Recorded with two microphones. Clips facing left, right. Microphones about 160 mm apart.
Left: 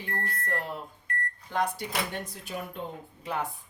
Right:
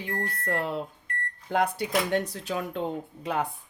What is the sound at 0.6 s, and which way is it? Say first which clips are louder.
Speech: right 6 dB; 75° right (ahead or behind).